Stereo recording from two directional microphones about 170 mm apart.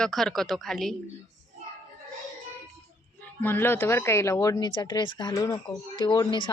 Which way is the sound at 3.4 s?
10° left (ahead or behind).